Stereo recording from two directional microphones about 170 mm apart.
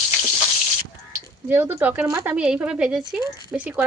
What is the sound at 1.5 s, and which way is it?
Speech, 15° right (ahead or behind).